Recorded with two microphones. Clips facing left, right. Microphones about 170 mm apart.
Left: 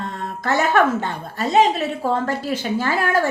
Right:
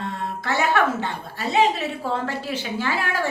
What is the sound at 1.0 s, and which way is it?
A woman's voice, 45° left (ahead or behind).